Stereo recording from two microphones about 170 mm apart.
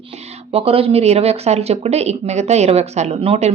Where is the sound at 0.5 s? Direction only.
35° right (ahead or behind).